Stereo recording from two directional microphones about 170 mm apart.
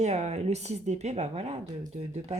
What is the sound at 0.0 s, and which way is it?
Speech, 40° right (ahead or behind).